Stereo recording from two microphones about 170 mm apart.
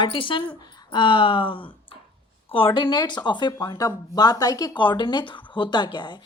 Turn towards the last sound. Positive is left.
turn(degrees=25)  # may be behind; listen again after turning